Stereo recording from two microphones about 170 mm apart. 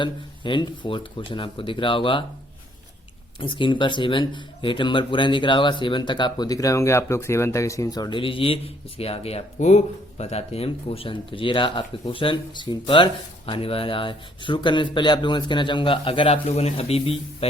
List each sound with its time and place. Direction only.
0.0 s speech: 30° left (ahead or behind)
3.4 s speech: 30° left (ahead or behind)